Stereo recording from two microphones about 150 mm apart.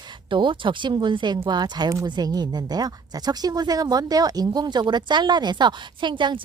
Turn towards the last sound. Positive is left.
turn(degrees=-30)  # may be behind; listen again after turning